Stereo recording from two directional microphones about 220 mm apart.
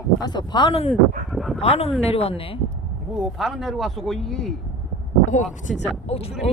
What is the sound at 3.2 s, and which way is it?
Speech, centre (ahead or behind).